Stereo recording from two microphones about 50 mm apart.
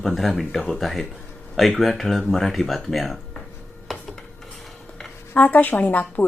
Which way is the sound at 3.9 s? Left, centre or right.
Centre.